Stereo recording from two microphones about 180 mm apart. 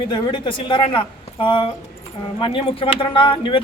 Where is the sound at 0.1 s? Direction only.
25° left (ahead or behind).